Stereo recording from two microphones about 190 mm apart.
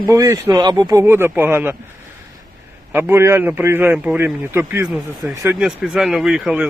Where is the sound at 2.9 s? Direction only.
10° right (ahead or behind).